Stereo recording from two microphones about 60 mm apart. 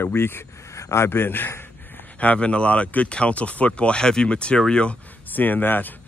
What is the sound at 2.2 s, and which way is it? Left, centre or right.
Speech, left.